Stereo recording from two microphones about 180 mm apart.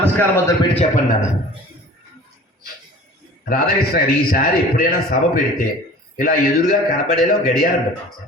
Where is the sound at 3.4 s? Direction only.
55° left (ahead or behind).